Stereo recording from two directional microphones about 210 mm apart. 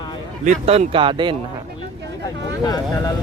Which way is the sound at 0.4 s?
30° right (ahead or behind).